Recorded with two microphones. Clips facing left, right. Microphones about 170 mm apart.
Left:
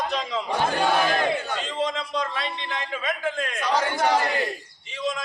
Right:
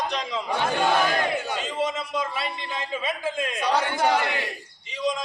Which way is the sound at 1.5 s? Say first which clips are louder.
Even; 5° right (ahead or behind).